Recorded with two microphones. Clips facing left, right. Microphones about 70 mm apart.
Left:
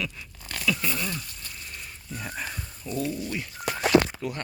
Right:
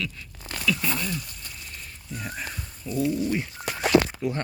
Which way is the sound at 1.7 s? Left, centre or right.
Centre.